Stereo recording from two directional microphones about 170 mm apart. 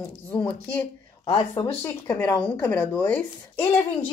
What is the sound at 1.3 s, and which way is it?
Speech, 25° left (ahead or behind).